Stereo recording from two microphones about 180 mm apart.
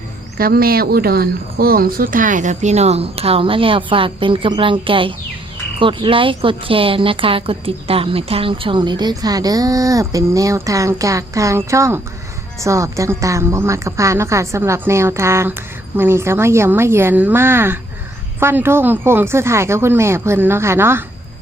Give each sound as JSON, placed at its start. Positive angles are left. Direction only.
{"t": 0.3, "sound": "a woman's voice", "side_deg": -55}